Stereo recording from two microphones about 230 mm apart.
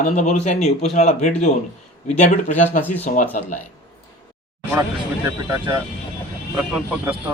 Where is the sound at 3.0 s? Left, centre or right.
Left.